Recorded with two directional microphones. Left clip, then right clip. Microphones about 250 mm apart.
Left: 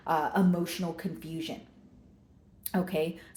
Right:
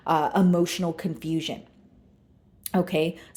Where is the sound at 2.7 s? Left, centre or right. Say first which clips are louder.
Right 6 dB; right.